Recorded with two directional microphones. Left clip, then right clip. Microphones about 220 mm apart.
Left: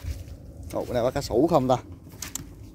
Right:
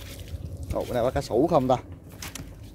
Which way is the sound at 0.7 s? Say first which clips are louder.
Even; 25° left (ahead or behind).